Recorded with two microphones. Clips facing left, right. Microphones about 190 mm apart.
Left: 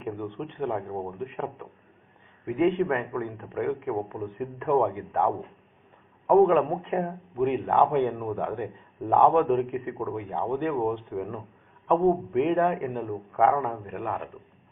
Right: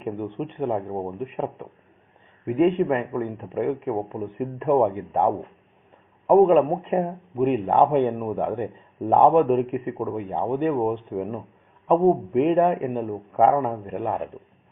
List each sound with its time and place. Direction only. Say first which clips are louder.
0.0 s a man's voice: right 4 dB; 15° right (ahead or behind)